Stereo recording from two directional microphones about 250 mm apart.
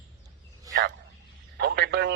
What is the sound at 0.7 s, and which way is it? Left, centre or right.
Speech, centre.